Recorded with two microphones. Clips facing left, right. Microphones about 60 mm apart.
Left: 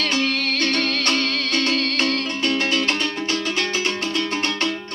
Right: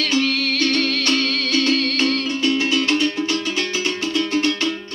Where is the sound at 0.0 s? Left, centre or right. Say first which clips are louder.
Right 2 dB; left.